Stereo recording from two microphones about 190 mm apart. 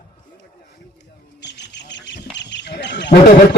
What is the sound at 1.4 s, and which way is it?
Bird, 65° left (ahead or behind).